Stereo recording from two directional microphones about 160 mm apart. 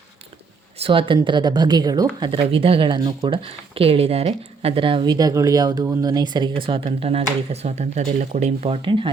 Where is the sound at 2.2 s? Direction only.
35° right (ahead or behind).